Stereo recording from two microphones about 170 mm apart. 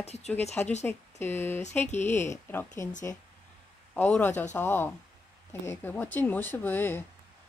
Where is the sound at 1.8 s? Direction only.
45° left (ahead or behind).